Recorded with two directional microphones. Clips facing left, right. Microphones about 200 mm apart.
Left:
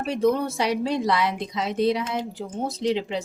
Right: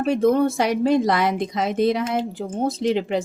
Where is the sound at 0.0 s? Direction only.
50° right (ahead or behind).